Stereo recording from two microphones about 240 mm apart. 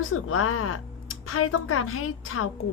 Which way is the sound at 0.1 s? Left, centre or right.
Left.